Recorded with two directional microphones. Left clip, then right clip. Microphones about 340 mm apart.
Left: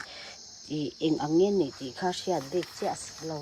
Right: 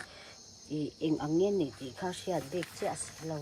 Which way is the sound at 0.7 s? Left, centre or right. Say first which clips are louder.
Left 4 dB; left.